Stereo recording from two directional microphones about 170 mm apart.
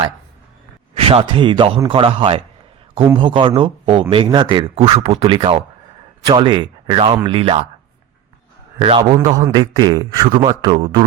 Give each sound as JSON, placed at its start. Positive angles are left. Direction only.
{"t": 0.9, "sound": "speech", "side_deg": -35}
{"t": 8.8, "sound": "speech", "side_deg": -30}